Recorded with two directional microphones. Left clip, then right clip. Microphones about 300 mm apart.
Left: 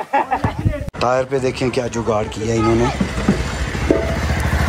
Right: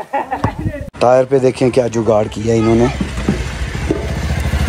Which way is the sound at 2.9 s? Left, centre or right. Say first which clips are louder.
Left 1 dB; left.